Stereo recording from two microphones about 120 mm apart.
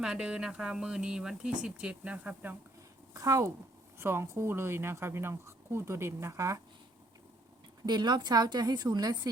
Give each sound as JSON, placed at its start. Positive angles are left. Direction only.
{"t": 0.0, "sound": "speech", "side_deg": -5}
{"t": 3.1, "sound": "speech", "side_deg": -30}
{"t": 7.9, "sound": "a woman's voice", "side_deg": -35}